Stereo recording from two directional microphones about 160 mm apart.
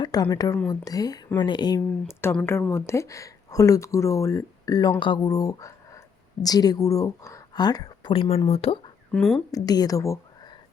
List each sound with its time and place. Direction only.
0.0 s speech: 25° left (ahead or behind)
9.1 s speech: 5° left (ahead or behind)
9.5 s a woman's voice: 25° left (ahead or behind)